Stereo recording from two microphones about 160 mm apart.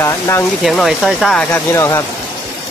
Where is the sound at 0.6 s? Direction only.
Centre (ahead or behind); by 2.0 s 20° left (ahead or behind).